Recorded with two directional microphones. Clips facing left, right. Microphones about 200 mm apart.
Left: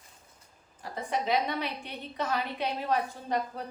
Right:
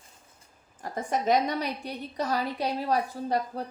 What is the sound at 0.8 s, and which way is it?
A woman's voice, 45° right (ahead or behind).